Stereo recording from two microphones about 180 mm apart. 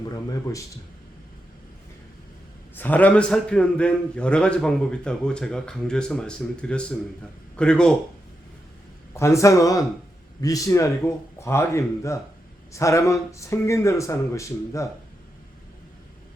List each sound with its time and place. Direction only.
2.7 s a man's voice: 10° left (ahead or behind)
9.1 s speech: 15° left (ahead or behind)